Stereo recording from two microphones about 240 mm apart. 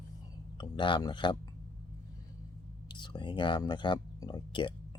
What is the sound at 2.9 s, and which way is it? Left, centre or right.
Speech, centre.